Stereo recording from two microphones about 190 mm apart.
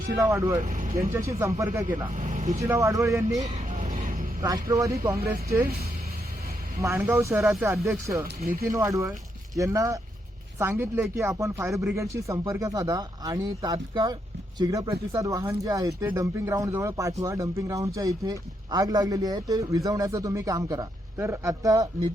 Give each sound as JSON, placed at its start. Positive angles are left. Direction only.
{"t": 0.2, "sound": "speech", "side_deg": -15}
{"t": 0.6, "sound": "speech", "side_deg": -40}
{"t": 1.1, "sound": "speech", "side_deg": -15}
{"t": 1.9, "sound": "speech", "side_deg": -40}
{"t": 2.6, "sound": "speech", "side_deg": -15}
{"t": 3.4, "sound": "vehicle", "side_deg": -40}
{"t": 4.4, "sound": "speech", "side_deg": -20}
{"t": 6.8, "sound": "speech", "side_deg": -10}